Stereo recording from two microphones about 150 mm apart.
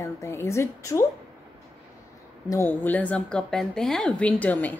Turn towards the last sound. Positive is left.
turn(degrees=10)  # may be behind; listen again after turning